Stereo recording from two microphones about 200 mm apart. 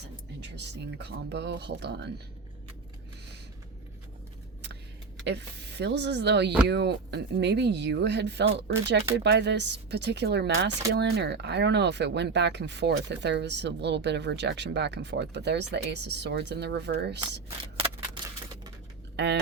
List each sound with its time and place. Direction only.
0.5 s speech: 60° right (ahead or behind)
5.2 s speech: 60° right (ahead or behind)
19.1 s speech: 60° right (ahead or behind)